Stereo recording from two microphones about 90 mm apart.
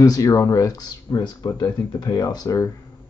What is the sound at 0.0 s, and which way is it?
Speech, 40° left (ahead or behind).